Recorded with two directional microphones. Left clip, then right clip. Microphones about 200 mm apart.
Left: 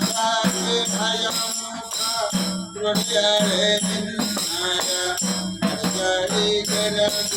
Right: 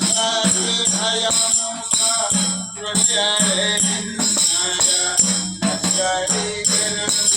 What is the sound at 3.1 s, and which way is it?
Music, 65° left (ahead or behind).